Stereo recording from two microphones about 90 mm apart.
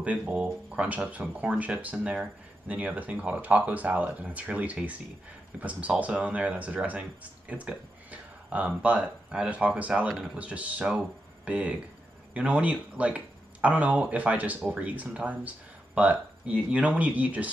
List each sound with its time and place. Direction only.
0.0 s speech: 10° right (ahead or behind)
10.0 s speech: centre (ahead or behind)
10.3 s speech: 15° right (ahead or behind)